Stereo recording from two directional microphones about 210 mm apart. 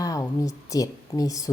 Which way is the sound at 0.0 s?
15° left (ahead or behind).